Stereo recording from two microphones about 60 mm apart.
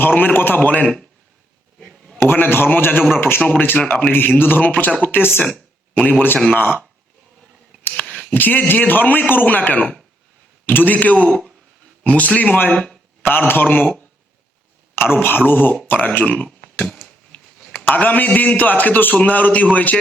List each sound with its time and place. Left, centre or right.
0.0 s a man's voice: left
1.8 s a sound: centre
2.1 s a man's voice: left
5.1 s a man's voice: left
6.0 s a man's voice: left
8.3 s a man's voice: left
14.9 s a man's voice: left
17.6 s a sound: centre
17.9 s a man's voice: left